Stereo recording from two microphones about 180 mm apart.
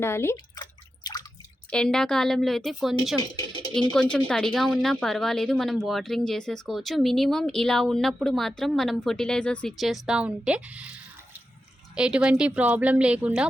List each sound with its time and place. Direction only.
0.0 s drip: 15° left (ahead or behind)
1.7 s speech: 5° left (ahead or behind)
3.2 s a sound: 25° left (ahead or behind)
3.8 s speech: 5° left (ahead or behind)